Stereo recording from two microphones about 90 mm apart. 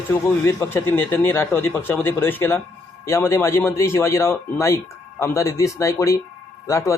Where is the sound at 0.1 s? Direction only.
30° left (ahead or behind).